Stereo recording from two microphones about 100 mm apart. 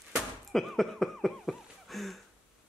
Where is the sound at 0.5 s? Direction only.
Centre (ahead or behind).